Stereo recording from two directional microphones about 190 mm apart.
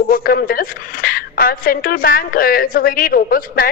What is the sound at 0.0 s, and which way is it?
A woman's voice, 50° left (ahead or behind).